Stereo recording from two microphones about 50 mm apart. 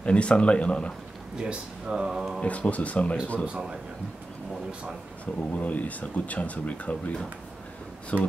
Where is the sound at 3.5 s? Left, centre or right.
Centre.